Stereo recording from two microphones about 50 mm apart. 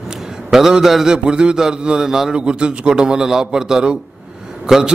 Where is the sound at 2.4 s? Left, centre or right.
Centre.